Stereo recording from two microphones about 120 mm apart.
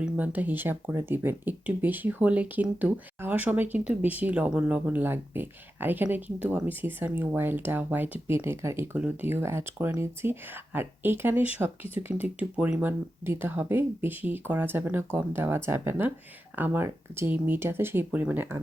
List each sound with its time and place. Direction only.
0.0 s speech: 15° right (ahead or behind)